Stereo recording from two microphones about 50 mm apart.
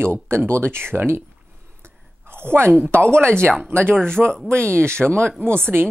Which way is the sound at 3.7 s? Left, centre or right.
Right.